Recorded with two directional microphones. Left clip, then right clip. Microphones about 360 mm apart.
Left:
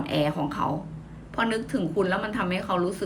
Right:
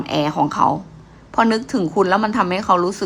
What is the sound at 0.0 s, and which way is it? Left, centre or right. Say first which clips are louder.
A woman's voice: right 8 dB; centre.